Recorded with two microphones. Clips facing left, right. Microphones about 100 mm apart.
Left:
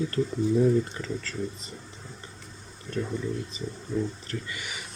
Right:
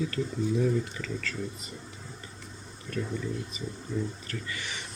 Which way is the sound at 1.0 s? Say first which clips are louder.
Left 2 dB; 30° left (ahead or behind).